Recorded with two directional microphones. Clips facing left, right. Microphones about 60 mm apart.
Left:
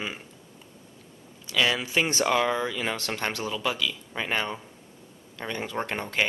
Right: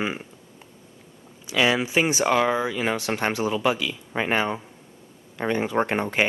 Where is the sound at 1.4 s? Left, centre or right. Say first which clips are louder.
Right 4 dB; centre.